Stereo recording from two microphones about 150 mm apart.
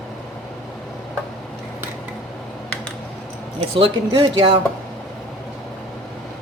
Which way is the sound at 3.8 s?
35° right (ahead or behind).